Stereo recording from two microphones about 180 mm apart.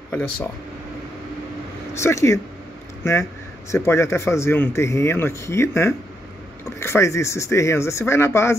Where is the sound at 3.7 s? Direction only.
15° left (ahead or behind).